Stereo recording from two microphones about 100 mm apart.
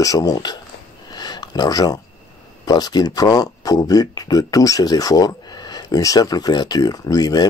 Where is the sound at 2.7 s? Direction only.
40° left (ahead or behind).